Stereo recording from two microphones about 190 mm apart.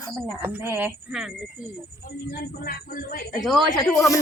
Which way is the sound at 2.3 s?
50° left (ahead or behind).